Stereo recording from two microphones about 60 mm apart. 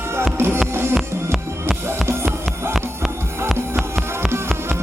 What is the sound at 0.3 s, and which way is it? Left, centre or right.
Music, right.